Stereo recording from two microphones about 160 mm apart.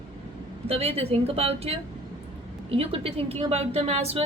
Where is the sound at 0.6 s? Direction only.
40° right (ahead or behind).